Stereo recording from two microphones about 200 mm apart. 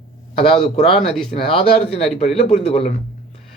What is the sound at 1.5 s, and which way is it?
Speech, 30° left (ahead or behind).